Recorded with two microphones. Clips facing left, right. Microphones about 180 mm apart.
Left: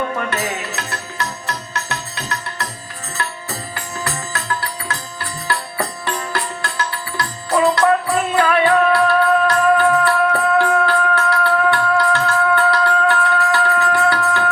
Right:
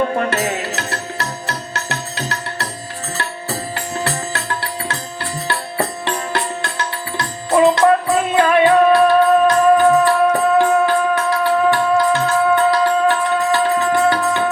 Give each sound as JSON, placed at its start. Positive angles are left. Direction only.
{"t": 0.1, "sound": "music", "side_deg": -35}
{"t": 3.8, "sound": "music", "side_deg": -30}